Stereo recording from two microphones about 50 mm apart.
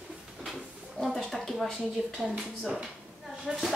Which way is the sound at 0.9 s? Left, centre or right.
Centre.